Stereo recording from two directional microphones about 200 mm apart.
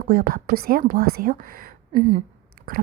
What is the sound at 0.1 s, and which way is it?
A woman's voice, 45° right (ahead or behind).